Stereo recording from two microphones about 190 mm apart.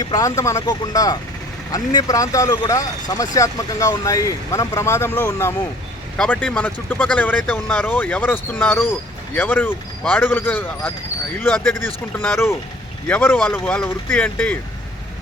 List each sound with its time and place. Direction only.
0.0 s speech: 20° left (ahead or behind)